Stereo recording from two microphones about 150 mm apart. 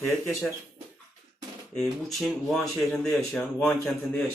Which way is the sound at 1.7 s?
Centre (ahead or behind).